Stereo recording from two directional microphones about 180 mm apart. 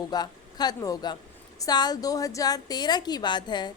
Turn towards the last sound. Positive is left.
turn(degrees=25)  # may be behind; listen again after turning